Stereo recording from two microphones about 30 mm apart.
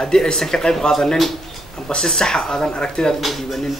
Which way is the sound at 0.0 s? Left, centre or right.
Left.